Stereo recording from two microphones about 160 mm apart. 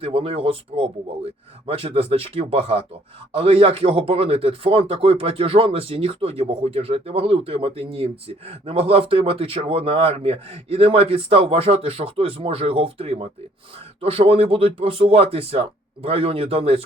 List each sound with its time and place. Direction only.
0.0 s speech: 35° right (ahead or behind)